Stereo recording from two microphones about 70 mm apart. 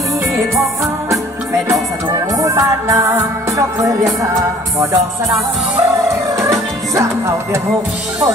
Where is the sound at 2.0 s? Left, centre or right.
Right.